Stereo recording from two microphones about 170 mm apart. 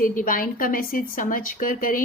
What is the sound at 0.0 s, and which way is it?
A woman's voice, 50° left (ahead or behind).